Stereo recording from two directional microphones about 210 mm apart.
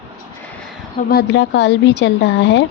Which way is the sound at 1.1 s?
55° left (ahead or behind).